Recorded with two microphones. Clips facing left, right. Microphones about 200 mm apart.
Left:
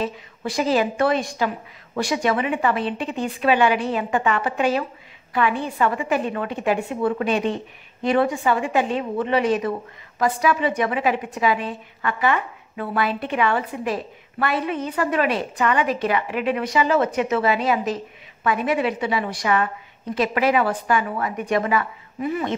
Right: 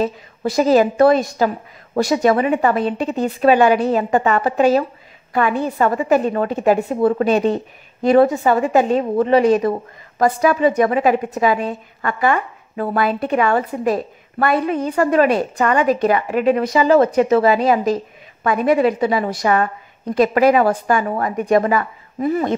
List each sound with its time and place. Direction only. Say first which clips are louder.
0.0 s a woman's voice: right 6 dB; 40° right (ahead or behind)